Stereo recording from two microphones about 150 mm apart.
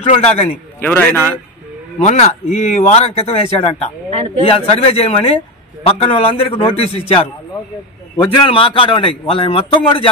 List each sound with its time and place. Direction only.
0.0 s speech: 40° left (ahead or behind)
0.7 s a man's voice: 10° left (ahead or behind)
2.0 s a man's voice: 45° left (ahead or behind)